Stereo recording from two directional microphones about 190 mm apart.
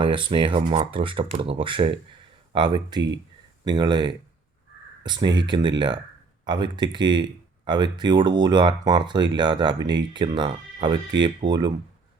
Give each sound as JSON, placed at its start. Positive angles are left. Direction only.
{"t": 0.0, "sound": "speech", "side_deg": -25}